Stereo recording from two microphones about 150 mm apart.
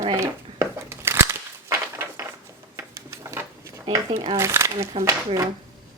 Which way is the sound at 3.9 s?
40° right (ahead or behind).